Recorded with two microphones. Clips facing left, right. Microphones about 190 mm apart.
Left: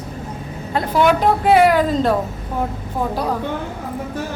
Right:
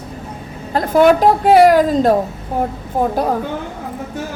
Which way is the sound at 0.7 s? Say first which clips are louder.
Right 5 dB; 40° right (ahead or behind).